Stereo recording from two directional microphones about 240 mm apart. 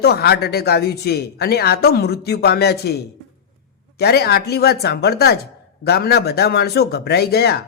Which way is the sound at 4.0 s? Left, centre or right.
Left.